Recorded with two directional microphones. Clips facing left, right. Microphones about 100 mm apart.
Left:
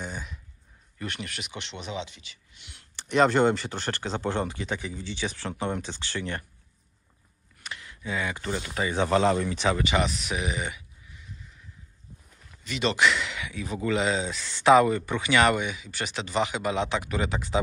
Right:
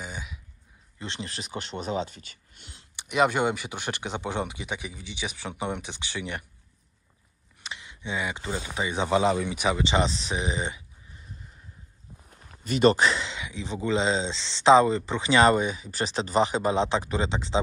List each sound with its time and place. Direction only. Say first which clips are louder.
0.0 s a sound: left 2 dB; 5° right (ahead or behind)
0.9 s speech: even; 25° right (ahead or behind); by 2.7 s 45° right (ahead or behind)
3.0 s speech: left 2 dB; 10° right (ahead or behind)
7.6 s speech: even; 20° right (ahead or behind)
9.9 s speech: right 1 dB; 30° right (ahead or behind)
12.6 s speech: right 4 dB; 45° right (ahead or behind); by 17.6 s 25° right (ahead or behind)